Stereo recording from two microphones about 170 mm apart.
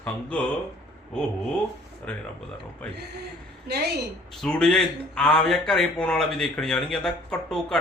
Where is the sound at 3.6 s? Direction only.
75° right (ahead or behind).